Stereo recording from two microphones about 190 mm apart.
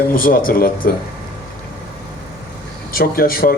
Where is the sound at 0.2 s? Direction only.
45° left (ahead or behind).